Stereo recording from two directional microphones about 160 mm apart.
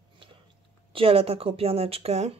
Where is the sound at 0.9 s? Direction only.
35° right (ahead or behind).